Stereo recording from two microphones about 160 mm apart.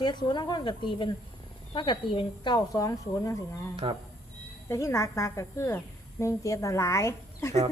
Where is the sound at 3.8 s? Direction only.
30° right (ahead or behind).